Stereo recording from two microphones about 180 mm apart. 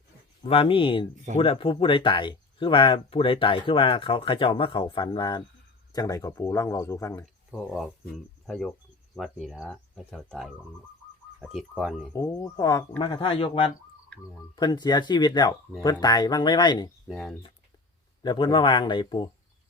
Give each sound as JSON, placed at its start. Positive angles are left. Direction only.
{"t": 0.4, "sound": "speech", "side_deg": 30}
{"t": 7.5, "sound": "speech", "side_deg": 0}
{"t": 12.1, "sound": "speech", "side_deg": 20}
{"t": 17.1, "sound": "speech", "side_deg": 0}
{"t": 18.2, "sound": "speech", "side_deg": 25}